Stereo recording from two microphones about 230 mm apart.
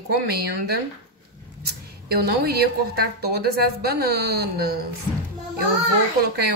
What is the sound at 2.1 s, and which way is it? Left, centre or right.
Speech, right.